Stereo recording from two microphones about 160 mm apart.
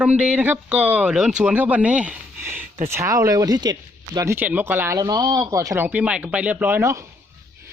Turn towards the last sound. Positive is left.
turn(degrees=-15)  # may be behind; listen again after turning